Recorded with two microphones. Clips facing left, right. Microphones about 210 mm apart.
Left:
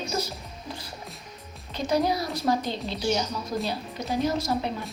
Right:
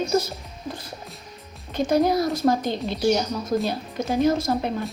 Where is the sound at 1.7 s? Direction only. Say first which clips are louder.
Right 5 dB; 50° right (ahead or behind).